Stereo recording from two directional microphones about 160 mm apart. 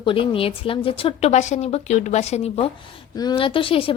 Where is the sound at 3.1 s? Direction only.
25° left (ahead or behind).